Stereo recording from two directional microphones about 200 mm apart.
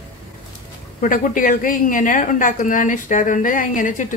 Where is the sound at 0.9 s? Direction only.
45° left (ahead or behind).